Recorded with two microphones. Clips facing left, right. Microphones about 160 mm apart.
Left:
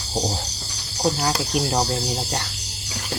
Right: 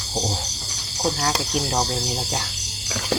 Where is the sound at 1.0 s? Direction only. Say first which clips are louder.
Left 1 dB; centre (ahead or behind).